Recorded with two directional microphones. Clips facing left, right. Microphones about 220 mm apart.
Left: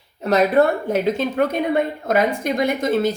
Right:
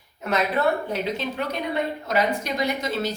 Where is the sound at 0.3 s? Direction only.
45° left (ahead or behind).